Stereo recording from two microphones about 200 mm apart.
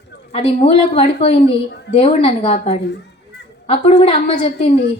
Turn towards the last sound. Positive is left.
turn(degrees=30)  # may be behind; listen again after turning